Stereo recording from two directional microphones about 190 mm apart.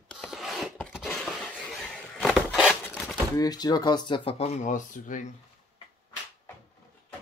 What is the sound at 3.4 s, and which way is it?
Speech, 20° left (ahead or behind).